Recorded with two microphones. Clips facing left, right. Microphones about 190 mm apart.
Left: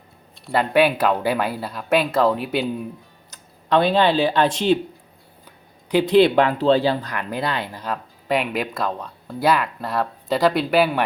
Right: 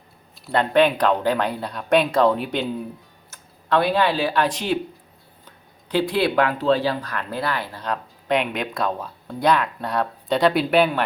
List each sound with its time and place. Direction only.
0.3 s speech: centre (ahead or behind)
3.2 s speech: 15° left (ahead or behind)
5.5 s speech: 15° left (ahead or behind)
7.1 s speech: 15° left (ahead or behind)
7.8 s speech: 5° left (ahead or behind)